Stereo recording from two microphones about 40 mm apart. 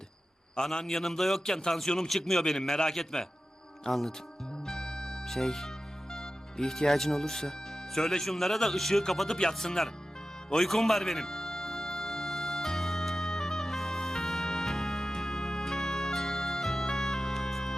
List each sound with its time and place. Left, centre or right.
0.5 s a man's voice: centre
4.6 s music: centre
5.2 s speech: centre
9.3 s speech: centre
9.6 s a man's voice: centre
10.5 s music: centre